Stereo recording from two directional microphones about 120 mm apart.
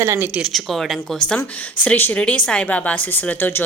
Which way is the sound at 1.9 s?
15° left (ahead or behind).